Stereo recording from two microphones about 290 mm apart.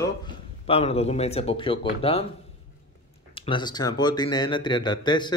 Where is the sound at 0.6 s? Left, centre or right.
Centre.